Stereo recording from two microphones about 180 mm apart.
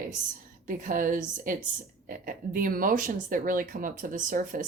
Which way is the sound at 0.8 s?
50° right (ahead or behind).